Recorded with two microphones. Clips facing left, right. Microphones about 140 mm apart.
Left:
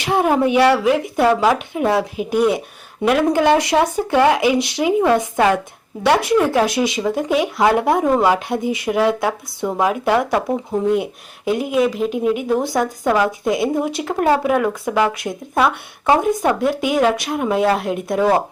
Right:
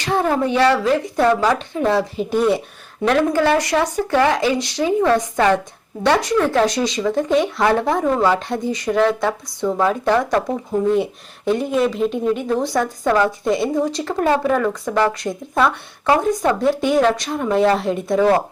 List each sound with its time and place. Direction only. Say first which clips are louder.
0.0 s speech: left 2 dB; 15° left (ahead or behind)
10.0 s speech: even; 5° left (ahead or behind)